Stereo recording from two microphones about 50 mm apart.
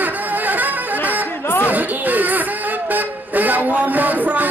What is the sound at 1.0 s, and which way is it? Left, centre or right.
Chatter, right.